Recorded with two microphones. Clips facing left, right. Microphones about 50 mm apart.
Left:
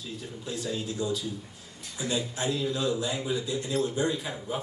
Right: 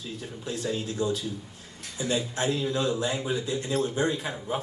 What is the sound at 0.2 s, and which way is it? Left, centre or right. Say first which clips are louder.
Speech: right 3 dB; right.